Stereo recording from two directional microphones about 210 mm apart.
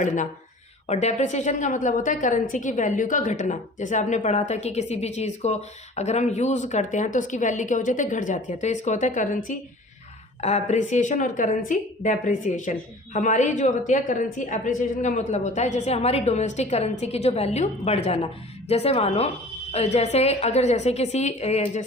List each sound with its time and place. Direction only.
0.9 s a woman's voice: 30° left (ahead or behind)